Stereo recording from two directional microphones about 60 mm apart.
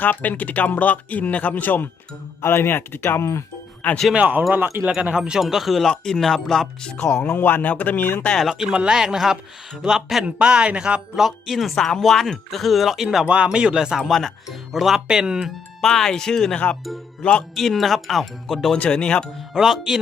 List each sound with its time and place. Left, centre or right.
0.0 s speech: left
2.4 s speech: left
4.1 s speech: right; by 7.3 s centre
7.3 s speech: left
8.4 s speech: centre
10.2 s speech: centre
11.2 s speech: centre
13.2 s speech: centre
14.1 s speech: centre
14.4 s speech: centre
15.8 s speech: centre
18.8 s speech: centre
19.5 s speech: centre